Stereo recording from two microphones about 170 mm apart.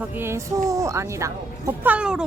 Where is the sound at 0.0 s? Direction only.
10° right (ahead or behind).